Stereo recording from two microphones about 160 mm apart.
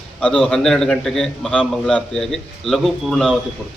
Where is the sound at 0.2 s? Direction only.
5° left (ahead or behind).